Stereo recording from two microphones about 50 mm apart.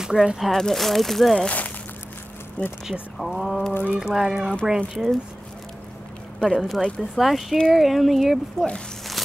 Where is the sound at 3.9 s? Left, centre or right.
Centre.